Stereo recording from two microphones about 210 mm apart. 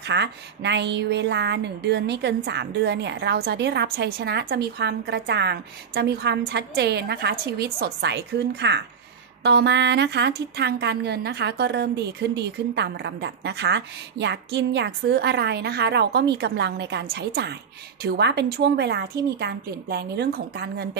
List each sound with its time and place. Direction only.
0.0 s a woman's voice: 55° right (ahead or behind)